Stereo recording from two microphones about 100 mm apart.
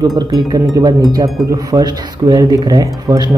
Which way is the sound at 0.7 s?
40° right (ahead or behind).